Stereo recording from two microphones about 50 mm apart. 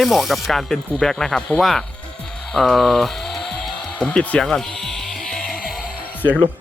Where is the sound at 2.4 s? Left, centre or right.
Centre.